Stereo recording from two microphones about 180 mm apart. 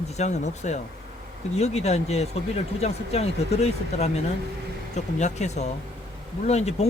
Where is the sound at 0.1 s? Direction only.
40° left (ahead or behind).